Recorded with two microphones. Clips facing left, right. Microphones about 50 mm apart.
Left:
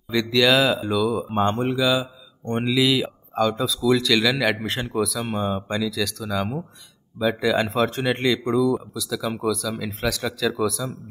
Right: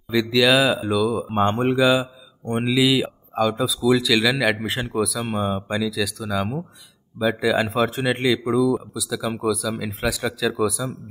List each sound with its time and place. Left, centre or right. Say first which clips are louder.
0.1 s speech: right 1 dB; centre
1.3 s speech: right 2 dB; centre
2.4 s speech: right 1 dB; centre